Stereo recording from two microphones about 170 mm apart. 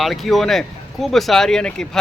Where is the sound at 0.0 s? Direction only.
Centre (ahead or behind).